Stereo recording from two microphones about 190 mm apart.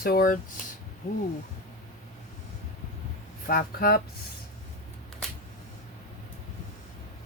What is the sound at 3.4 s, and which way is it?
Speech, 50° left (ahead or behind).